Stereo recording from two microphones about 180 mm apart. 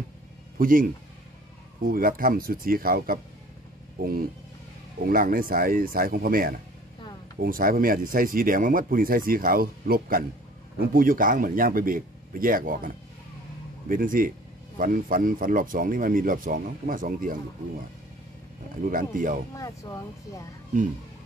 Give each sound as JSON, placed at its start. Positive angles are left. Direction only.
{"t": 0.6, "sound": "a man's voice", "side_deg": -50}
{"t": 18.9, "sound": "speech", "side_deg": -50}
{"t": 19.5, "sound": "speech", "side_deg": 20}